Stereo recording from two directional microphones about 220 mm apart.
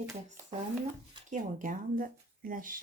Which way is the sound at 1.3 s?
35° right (ahead or behind).